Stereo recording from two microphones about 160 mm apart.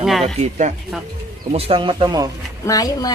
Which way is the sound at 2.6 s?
20° left (ahead or behind).